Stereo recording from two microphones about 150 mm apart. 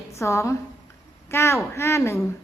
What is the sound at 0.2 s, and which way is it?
A woman's voice, 20° left (ahead or behind).